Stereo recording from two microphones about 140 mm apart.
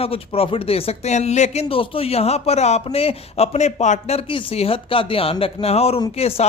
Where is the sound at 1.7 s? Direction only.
40° left (ahead or behind).